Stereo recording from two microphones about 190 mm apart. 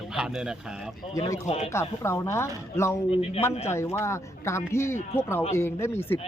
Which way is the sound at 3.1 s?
35° left (ahead or behind).